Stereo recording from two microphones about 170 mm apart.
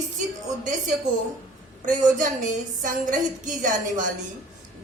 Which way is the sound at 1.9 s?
50° right (ahead or behind).